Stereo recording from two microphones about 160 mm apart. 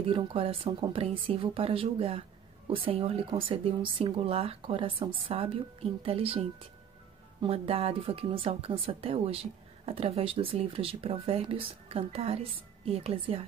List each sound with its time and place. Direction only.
0.0 s speech: 35° right (ahead or behind)